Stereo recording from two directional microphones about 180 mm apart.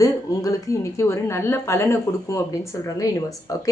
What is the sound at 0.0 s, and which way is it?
Speech, 20° left (ahead or behind).